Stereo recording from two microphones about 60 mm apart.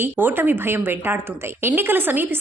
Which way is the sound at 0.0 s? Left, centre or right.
Right.